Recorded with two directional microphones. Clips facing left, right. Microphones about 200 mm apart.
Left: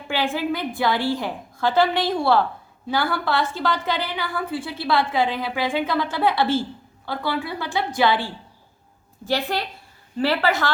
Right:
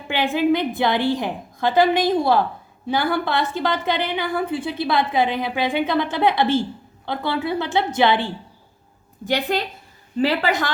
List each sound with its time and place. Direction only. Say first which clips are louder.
0.1 s a woman's voice: right 5 dB; 20° right (ahead or behind)